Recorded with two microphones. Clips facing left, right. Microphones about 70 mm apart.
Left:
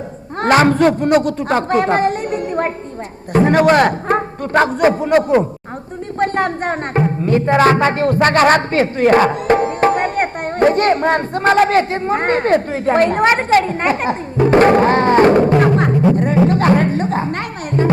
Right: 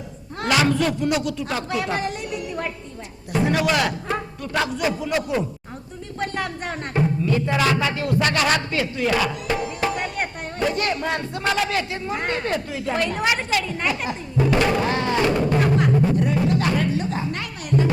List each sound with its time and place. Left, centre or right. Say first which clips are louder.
0.4 s a woman's voice: left 8 dB; left
16.1 s music: left 7 dB; left